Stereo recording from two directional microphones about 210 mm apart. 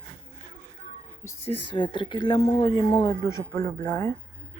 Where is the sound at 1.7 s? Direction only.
20° left (ahead or behind).